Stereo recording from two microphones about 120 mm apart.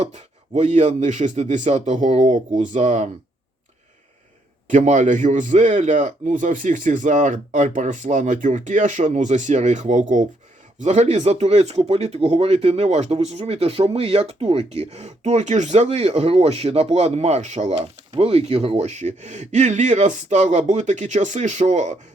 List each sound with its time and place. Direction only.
0.0 s speech: 75° right (ahead or behind)
4.7 s speech: 85° right
10.8 s speech: 70° right (ahead or behind)